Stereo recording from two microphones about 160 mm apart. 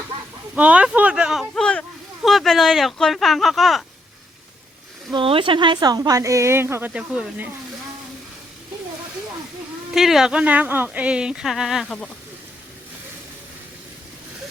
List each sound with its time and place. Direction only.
0.5 s speech: 10° right (ahead or behind)
5.1 s speech: 35° right (ahead or behind); by 7.4 s 5° right (ahead or behind)
9.9 s speech: centre (ahead or behind)